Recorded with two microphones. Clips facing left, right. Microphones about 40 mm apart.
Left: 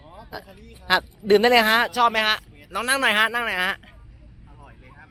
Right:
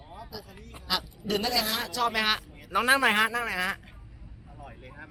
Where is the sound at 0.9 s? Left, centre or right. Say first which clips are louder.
Left 12 dB; left.